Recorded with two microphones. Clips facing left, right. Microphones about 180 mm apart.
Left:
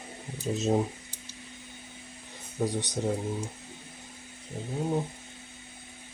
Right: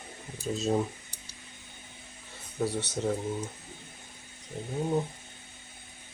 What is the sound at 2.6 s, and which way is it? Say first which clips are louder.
Speech: left 1 dB; 15° left (ahead or behind).